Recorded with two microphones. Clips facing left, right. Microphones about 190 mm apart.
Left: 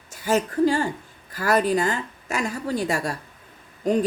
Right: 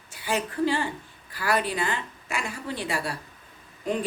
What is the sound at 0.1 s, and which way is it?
A woman's voice, 45° left (ahead or behind).